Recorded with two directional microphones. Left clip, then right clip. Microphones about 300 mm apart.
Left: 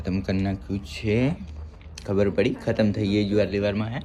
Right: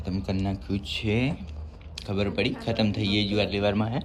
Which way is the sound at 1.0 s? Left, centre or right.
Centre.